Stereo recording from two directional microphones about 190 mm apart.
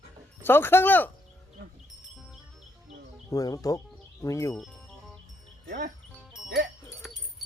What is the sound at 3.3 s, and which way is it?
Speech, 20° left (ahead or behind).